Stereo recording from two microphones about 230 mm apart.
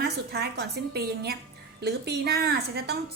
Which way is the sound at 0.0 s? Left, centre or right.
Right.